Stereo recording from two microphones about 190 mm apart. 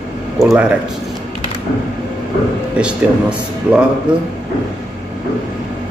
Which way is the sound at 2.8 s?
5° right (ahead or behind).